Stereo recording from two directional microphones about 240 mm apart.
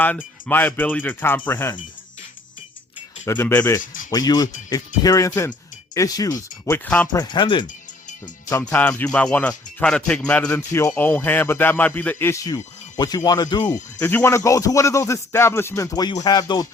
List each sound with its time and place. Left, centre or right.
0.2 s speech: centre
3.2 s speech: centre
3.8 s speech: left
4.1 s speech: centre
7.7 s music: left
8.4 s speech: centre